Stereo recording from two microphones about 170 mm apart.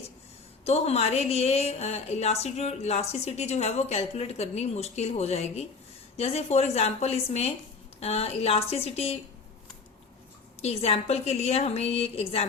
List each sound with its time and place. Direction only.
0.6 s speech: 40° left (ahead or behind)
10.6 s speech: 40° left (ahead or behind)